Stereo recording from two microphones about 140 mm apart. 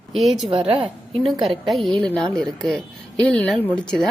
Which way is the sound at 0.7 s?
40° right (ahead or behind).